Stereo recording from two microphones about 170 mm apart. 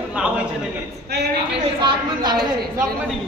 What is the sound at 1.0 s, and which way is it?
Speech, 75° right (ahead or behind).